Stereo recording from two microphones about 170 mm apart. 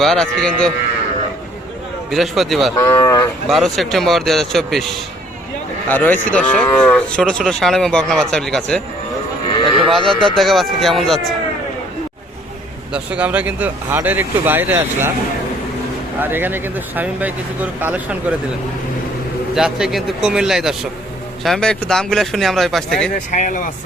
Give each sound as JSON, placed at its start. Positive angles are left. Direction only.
{"t": 0.0, "sound": "speech", "side_deg": 5}
{"t": 2.0, "sound": "speech", "side_deg": 0}
{"t": 2.7, "sound": "speech", "side_deg": 20}
{"t": 3.5, "sound": "speech", "side_deg": 0}
{"t": 10.0, "sound": "speech", "side_deg": -30}
{"t": 10.3, "sound": "speech", "side_deg": 0}
{"t": 12.9, "sound": "speech", "side_deg": -5}
{"t": 16.2, "sound": "speech", "side_deg": -10}
{"t": 19.5, "sound": "speech", "side_deg": -5}
{"t": 23.1, "sound": "speech", "side_deg": 50}